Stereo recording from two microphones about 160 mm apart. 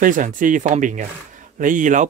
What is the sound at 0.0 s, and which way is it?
Speech, 55° right (ahead or behind).